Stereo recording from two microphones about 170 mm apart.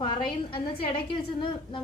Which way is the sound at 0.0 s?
30° left (ahead or behind).